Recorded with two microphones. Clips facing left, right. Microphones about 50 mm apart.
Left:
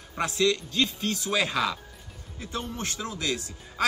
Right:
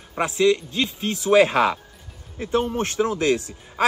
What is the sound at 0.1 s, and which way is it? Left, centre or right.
Speech, right.